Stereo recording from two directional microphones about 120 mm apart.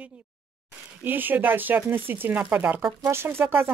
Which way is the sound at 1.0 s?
15° right (ahead or behind).